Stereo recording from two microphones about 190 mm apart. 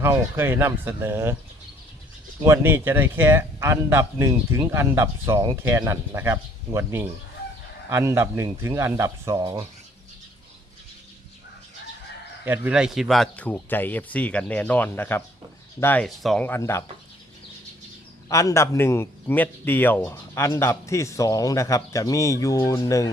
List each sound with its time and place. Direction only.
0.0 s speech: 10° right (ahead or behind)
2.4 s speech: 15° right (ahead or behind)
12.5 s a man's voice: 5° right (ahead or behind); by 16.8 s 15° left (ahead or behind)
18.3 s a man's voice: 15° left (ahead or behind)